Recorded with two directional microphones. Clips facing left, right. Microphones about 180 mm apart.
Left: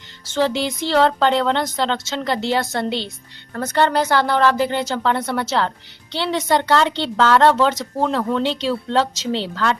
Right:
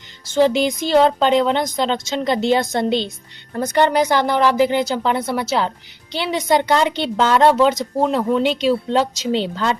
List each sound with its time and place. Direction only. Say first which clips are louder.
0.3 s a woman's voice: right 4 dB; 15° right (ahead or behind)